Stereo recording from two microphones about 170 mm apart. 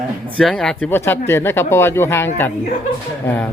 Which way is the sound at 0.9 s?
15° left (ahead or behind).